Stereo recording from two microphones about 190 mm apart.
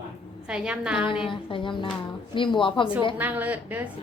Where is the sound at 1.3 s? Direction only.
25° left (ahead or behind).